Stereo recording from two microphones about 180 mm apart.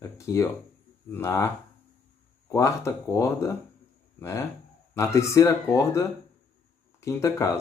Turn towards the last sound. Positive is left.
turn(degrees=15)  # may be behind; listen again after turning